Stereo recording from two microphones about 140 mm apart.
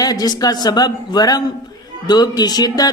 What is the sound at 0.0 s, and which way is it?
Speech, 30° left (ahead or behind).